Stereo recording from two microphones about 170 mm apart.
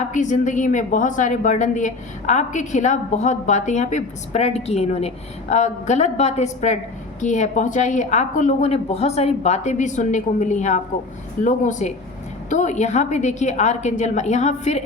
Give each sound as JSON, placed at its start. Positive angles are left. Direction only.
{"t": 0.1, "sound": "a woman's voice", "side_deg": 45}